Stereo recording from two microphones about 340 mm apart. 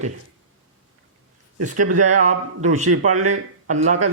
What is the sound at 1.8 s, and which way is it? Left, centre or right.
Speech, right.